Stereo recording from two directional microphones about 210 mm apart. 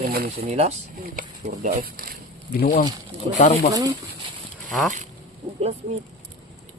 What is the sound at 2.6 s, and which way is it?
Speech, 40° left (ahead or behind).